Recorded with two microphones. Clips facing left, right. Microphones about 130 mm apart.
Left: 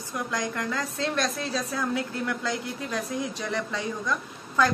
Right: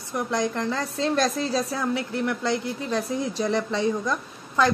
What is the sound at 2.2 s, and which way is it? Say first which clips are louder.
A woman's voice: right 4 dB; 25° right (ahead or behind).